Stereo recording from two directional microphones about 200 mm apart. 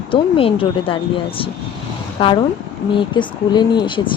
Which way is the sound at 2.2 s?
25° left (ahead or behind).